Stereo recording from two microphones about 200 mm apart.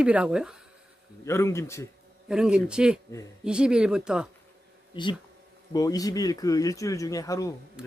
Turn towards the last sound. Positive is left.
turn(degrees=-5)  # may be behind; listen again after turning